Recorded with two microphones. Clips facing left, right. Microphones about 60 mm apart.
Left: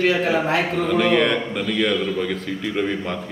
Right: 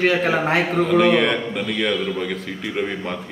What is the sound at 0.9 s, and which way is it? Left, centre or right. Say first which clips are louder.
A man's voice: right 1 dB; centre.